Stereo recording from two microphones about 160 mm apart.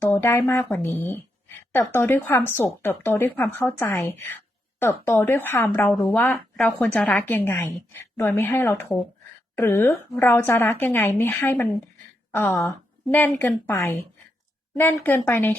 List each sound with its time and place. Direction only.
0.0 s a woman's voice: 15° left (ahead or behind)
15.0 s a woman's voice: 10° left (ahead or behind)